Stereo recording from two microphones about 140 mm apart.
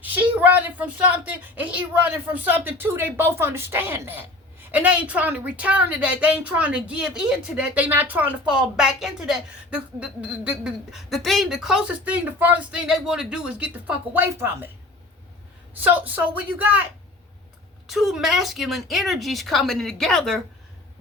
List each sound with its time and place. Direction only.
0.0 s a woman's voice: 10° right (ahead or behind)
15.7 s a woman's voice: 10° right (ahead or behind)
17.8 s speech: centre (ahead or behind)